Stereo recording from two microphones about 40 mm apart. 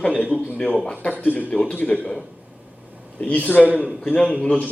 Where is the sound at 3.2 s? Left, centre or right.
Left.